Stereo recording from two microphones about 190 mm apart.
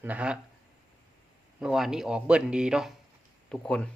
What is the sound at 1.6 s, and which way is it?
A man's voice, 5° right (ahead or behind).